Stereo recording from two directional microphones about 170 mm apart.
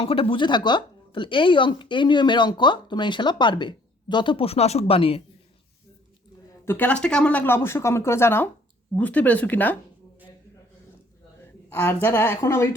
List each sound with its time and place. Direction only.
0.0 s speech: 35° left (ahead or behind)
6.5 s speech: 10° left (ahead or behind)
11.7 s speech: 15° left (ahead or behind)